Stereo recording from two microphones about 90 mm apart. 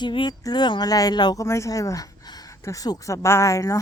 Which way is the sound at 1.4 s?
35° left (ahead or behind).